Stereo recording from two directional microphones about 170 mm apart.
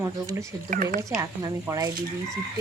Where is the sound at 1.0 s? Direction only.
20° right (ahead or behind).